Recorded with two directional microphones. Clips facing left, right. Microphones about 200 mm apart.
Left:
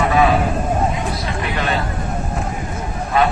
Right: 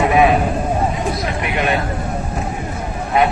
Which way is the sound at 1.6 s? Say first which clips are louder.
Right 3 dB; 20° right (ahead or behind).